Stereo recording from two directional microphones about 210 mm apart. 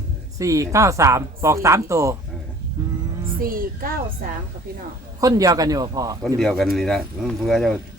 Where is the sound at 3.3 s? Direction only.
45° right (ahead or behind).